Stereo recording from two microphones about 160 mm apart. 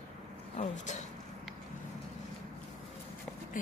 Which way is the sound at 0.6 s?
50° left (ahead or behind).